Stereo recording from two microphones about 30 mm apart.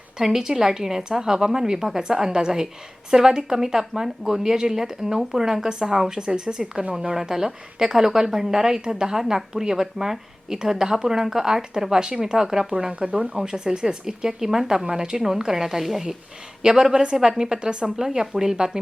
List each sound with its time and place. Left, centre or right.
0.2 s a woman's voice: centre
14.8 s a woman's voice: right
16.6 s speech: right
17.9 s speech: centre